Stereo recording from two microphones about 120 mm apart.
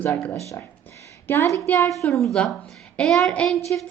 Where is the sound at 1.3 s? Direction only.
20° left (ahead or behind).